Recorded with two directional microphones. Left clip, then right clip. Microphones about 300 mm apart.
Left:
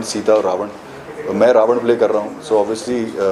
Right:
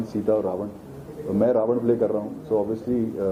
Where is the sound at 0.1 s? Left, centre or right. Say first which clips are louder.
Left 9 dB; centre.